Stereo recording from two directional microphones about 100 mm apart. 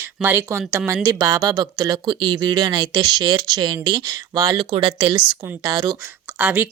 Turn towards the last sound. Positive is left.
turn(degrees=-15)  # may be behind; listen again after turning